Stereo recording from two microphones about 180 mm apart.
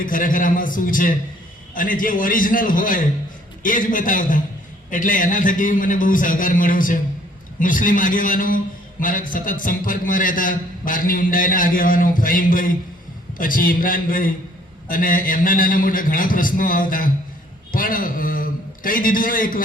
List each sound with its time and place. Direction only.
0.0 s a man's voice: 50° left (ahead or behind)